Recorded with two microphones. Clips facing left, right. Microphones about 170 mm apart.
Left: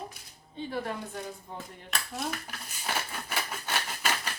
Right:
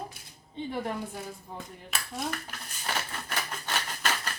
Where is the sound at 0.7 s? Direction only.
15° right (ahead or behind).